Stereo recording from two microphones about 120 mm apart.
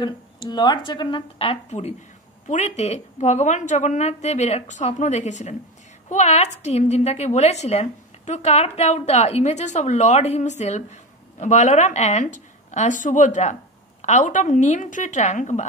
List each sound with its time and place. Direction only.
0.0 s speech: 40° left (ahead or behind)
1.7 s speech: 65° left (ahead or behind)
2.4 s a woman's voice: 80° left